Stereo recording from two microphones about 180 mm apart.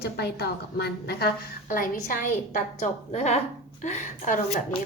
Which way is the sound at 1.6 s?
45° left (ahead or behind).